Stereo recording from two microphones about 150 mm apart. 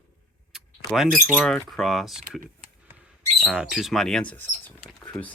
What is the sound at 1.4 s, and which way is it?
Speech, 5° left (ahead or behind).